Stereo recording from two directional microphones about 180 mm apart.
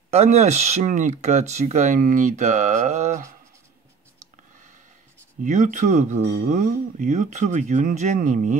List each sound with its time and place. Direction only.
0.1 s speech: 40° right (ahead or behind)
5.4 s speech: 45° right (ahead or behind)